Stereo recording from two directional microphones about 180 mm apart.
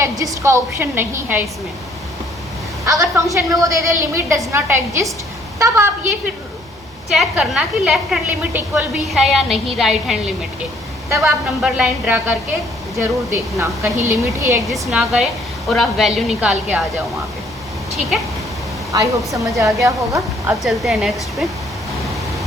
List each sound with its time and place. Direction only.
0.0 s a woman's voice: 15° right (ahead or behind)
2.8 s a woman's voice: 15° right (ahead or behind)
7.1 s a woman's voice: centre (ahead or behind)
11.1 s a woman's voice: 15° right (ahead or behind)
14.7 s a woman's voice: centre (ahead or behind)
18.9 s a woman's voice: 20° right (ahead or behind)
20.6 s a woman's voice: centre (ahead or behind)